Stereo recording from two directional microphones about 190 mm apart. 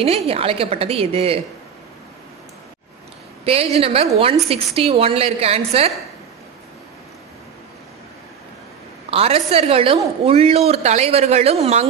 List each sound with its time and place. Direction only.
0.0 s a woman's voice: 30° right (ahead or behind)
3.4 s a woman's voice: 30° right (ahead or behind)
9.1 s a woman's voice: 30° right (ahead or behind)